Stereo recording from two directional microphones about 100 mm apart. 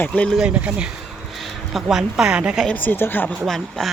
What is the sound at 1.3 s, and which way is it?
Speech, centre (ahead or behind).